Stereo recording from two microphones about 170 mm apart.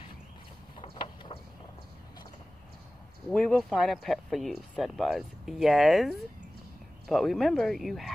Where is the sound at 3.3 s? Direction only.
5° left (ahead or behind).